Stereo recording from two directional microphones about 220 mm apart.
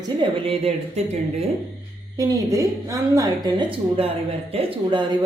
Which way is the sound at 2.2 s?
15° right (ahead or behind).